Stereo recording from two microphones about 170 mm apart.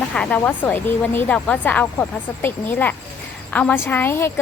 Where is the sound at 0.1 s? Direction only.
5° left (ahead or behind).